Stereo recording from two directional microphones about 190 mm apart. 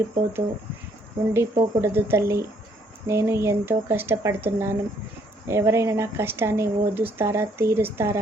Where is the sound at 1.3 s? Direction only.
15° right (ahead or behind).